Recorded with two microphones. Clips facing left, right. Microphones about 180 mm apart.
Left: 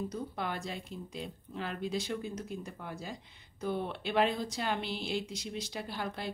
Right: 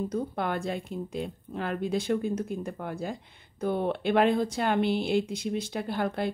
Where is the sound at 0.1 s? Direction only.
55° right (ahead or behind).